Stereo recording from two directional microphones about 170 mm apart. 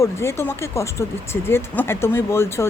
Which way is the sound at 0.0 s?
15° left (ahead or behind).